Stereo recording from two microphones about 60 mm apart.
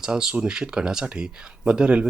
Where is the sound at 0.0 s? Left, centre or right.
Centre.